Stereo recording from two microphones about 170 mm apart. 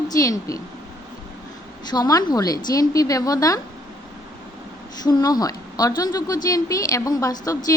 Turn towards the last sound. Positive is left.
turn(degrees=20)  # may be behind; listen again after turning